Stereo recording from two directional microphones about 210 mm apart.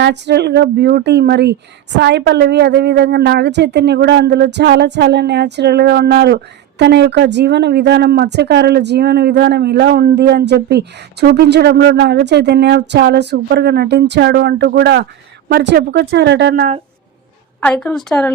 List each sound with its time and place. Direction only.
0.0 s a woman's voice: 55° right (ahead or behind)
17.6 s a woman's voice: 5° left (ahead or behind)